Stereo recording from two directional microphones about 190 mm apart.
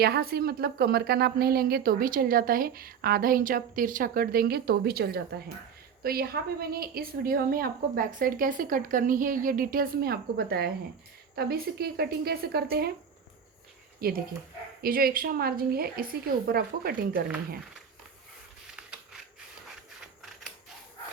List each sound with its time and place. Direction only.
0.0 s a woman's voice: 55° right (ahead or behind)
14.0 s speech: 50° right (ahead or behind)
18.8 s a sound: 5° right (ahead or behind)